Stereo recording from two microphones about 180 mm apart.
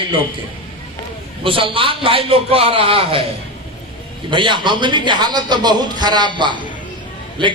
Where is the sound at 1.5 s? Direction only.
30° right (ahead or behind).